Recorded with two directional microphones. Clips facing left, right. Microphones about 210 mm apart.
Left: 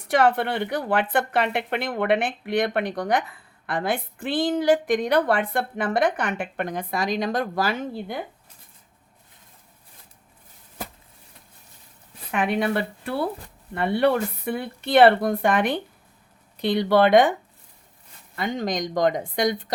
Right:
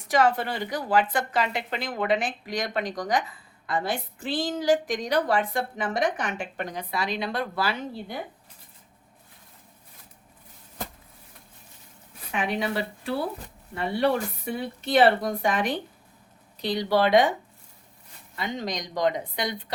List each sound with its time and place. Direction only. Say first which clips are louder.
0.0 s a woman's voice: left 3 dB; 60° left (ahead or behind); by 8.1 s 45° left (ahead or behind)
12.3 s a woman's voice: left 4 dB; 55° left (ahead or behind)
18.3 s speech: left 5 dB; 50° left (ahead or behind)